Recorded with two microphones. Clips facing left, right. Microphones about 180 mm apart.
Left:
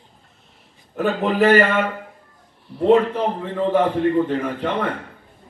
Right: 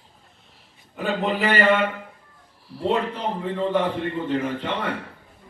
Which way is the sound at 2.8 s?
50° left (ahead or behind).